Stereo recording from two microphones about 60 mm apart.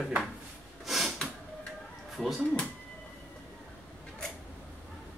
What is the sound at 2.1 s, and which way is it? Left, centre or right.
Speech, centre.